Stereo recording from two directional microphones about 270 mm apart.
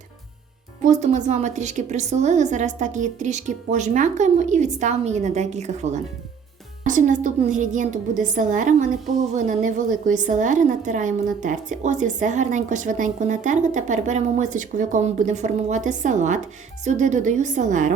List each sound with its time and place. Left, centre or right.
0.9 s a woman's voice: right